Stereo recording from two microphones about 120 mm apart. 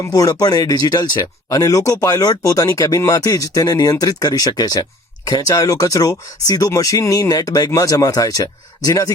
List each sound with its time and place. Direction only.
0.0 s speech: 30° left (ahead or behind)